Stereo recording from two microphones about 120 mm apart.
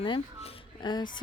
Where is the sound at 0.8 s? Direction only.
40° left (ahead or behind).